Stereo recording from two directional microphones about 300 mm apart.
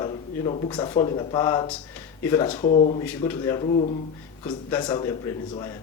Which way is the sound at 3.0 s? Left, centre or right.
Centre.